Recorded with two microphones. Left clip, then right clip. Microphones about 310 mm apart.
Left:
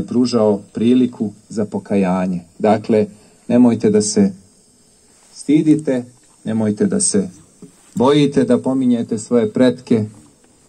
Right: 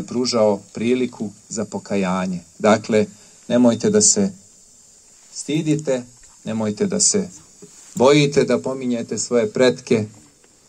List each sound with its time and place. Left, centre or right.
0.0 s speech: right
5.9 s speech: right